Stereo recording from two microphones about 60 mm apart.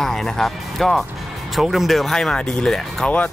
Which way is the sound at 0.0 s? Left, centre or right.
Centre.